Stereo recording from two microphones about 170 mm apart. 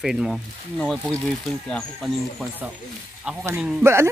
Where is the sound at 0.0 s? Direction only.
5° right (ahead or behind).